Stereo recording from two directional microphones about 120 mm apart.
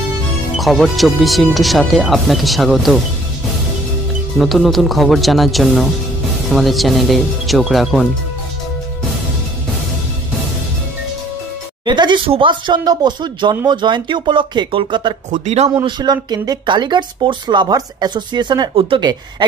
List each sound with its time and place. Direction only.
0.6 s speech: centre (ahead or behind)
4.4 s speech: centre (ahead or behind)
11.8 s a sound: 40° right (ahead or behind)
12.3 s speech: 45° right (ahead or behind)
15.3 s speech: 70° right (ahead or behind)
15.8 s speech: 35° right (ahead or behind)